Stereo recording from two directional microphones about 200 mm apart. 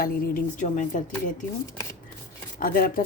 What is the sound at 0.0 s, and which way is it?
A woman's voice, 45° left (ahead or behind).